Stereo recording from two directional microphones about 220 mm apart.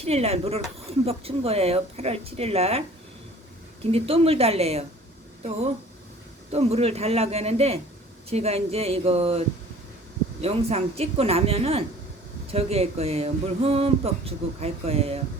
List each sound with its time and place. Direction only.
0.0 s speech: 30° right (ahead or behind)
3.9 s speech: 25° right (ahead or behind)
10.4 s speech: 30° right (ahead or behind)